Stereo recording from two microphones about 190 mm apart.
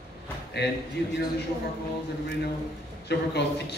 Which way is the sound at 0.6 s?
60° left (ahead or behind).